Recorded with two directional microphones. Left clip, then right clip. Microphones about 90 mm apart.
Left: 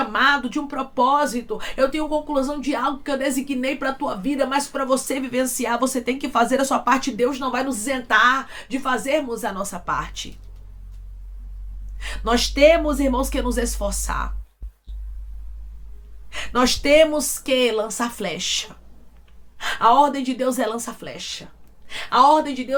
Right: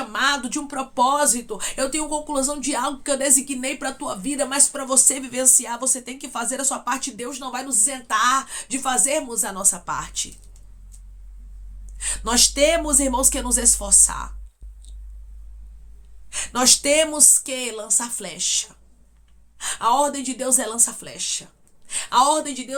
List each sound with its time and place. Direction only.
0.0 s speech: 45° right (ahead or behind); by 10.2 s 20° right (ahead or behind)
11.9 s speech: 25° right (ahead or behind)
16.3 s speech: 35° right (ahead or behind)